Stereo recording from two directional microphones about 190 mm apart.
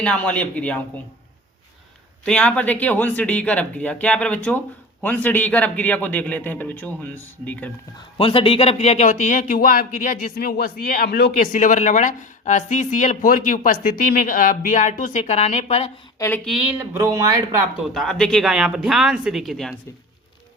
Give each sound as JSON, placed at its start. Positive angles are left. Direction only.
{"t": 0.0, "sound": "speech", "side_deg": 5}
{"t": 2.2, "sound": "speech", "side_deg": 5}
{"t": 8.2, "sound": "a woman's voice", "side_deg": 30}
{"t": 16.1, "sound": "speech", "side_deg": 10}
{"t": 16.5, "sound": "speech", "side_deg": -5}
{"t": 17.0, "sound": "speech", "side_deg": -15}
{"t": 17.9, "sound": "speech", "side_deg": 5}